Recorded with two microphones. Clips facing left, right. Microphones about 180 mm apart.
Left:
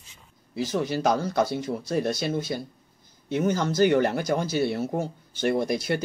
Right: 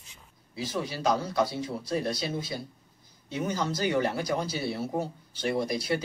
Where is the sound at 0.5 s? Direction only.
45° left (ahead or behind).